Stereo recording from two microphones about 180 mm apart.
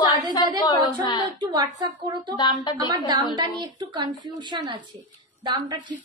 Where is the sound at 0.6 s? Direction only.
25° left (ahead or behind).